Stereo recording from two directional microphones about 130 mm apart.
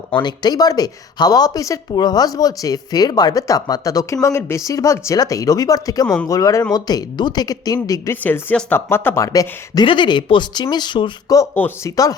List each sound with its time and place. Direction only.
0.1 s speech: 35° left (ahead or behind)
8.1 s speech: 15° left (ahead or behind)
9.8 s speech: 40° left (ahead or behind)
11.5 s speech: 15° left (ahead or behind)
11.9 s speech: 25° left (ahead or behind)